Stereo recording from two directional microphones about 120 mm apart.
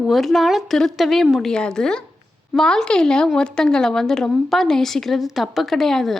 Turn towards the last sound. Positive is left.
turn(degrees=5)  # may be behind; listen again after turning